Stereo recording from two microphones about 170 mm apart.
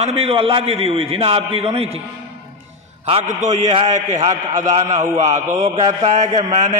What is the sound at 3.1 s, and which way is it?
Speech, 35° right (ahead or behind).